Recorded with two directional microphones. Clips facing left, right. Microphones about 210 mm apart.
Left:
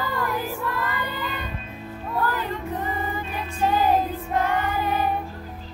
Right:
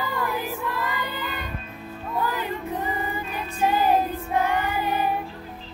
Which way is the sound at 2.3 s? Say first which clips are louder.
Even; 10° right (ahead or behind).